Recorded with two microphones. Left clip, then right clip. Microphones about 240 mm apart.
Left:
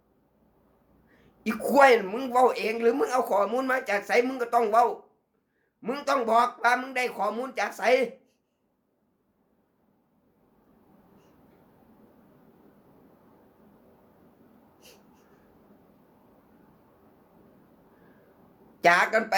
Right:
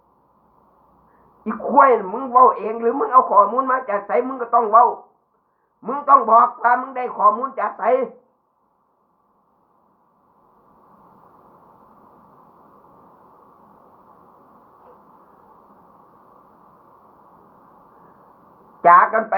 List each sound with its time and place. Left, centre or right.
1.5 s speech: left
5.8 s speech: centre
18.8 s speech: centre